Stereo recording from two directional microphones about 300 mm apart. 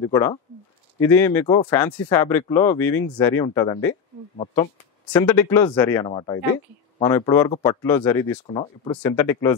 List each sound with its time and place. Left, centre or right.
0.0 s speech: centre
5.1 s speech: centre